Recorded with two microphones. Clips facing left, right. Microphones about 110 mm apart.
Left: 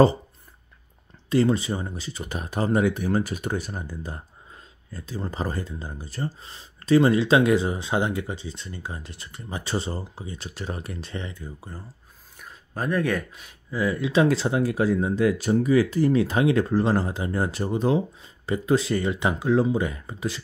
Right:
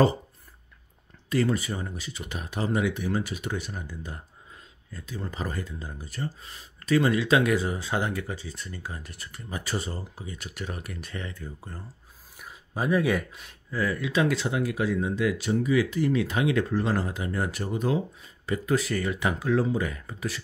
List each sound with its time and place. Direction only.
1.3 s speech: 25° left (ahead or behind); by 11.8 s 10° left (ahead or behind)
12.4 s speech: 10° right (ahead or behind)
13.7 s speech: 20° left (ahead or behind)